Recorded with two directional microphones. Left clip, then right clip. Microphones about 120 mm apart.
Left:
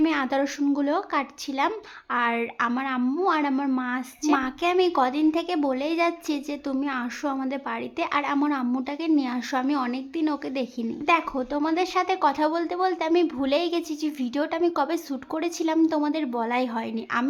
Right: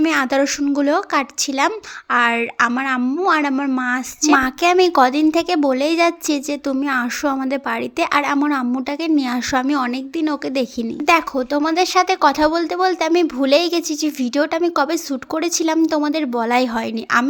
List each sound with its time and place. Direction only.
0.0 s speech: 35° right (ahead or behind)
4.4 s speech: 50° right (ahead or behind)